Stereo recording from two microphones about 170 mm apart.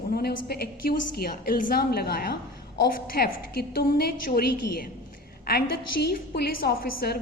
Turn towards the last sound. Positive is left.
turn(degrees=65)  # may be behind; listen again after turning